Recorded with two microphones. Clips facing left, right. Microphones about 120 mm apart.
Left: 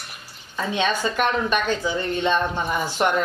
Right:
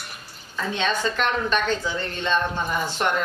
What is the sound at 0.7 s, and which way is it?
A woman's voice, 15° left (ahead or behind).